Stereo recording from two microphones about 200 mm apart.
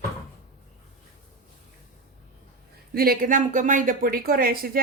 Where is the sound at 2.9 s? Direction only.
45° right (ahead or behind).